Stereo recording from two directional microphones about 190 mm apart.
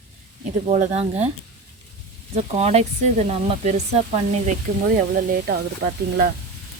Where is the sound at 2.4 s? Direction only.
35° right (ahead or behind).